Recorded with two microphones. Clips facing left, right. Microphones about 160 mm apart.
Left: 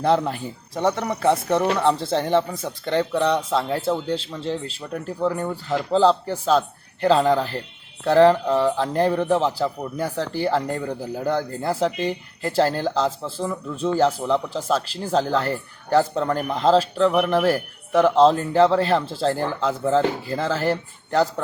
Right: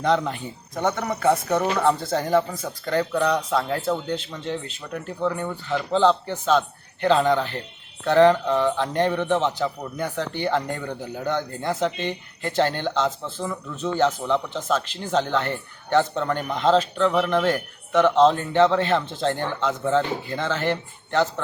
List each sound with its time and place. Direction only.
0.0 s speech: 5° left (ahead or behind)
0.7 s speech: 30° left (ahead or behind)